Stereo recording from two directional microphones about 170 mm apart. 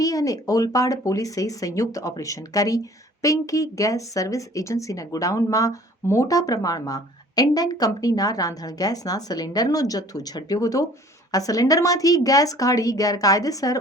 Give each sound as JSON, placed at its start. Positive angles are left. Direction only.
{"t": 0.0, "sound": "speech", "side_deg": 20}